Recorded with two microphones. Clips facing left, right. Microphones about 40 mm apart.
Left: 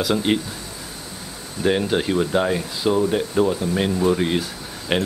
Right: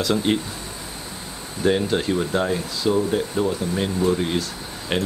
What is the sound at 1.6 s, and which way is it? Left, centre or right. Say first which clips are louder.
Speech: left 1 dB; centre.